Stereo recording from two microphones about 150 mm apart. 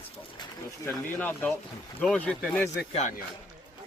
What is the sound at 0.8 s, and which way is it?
Speech, 15° left (ahead or behind).